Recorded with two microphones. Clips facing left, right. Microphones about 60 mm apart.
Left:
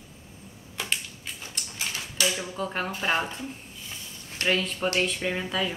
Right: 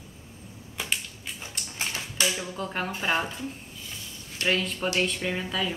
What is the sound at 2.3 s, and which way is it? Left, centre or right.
Speech, centre.